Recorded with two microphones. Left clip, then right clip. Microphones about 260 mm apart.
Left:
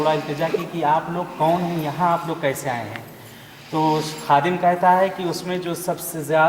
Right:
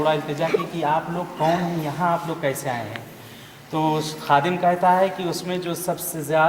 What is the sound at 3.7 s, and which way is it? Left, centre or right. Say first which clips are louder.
Speech: left 2 dB; left.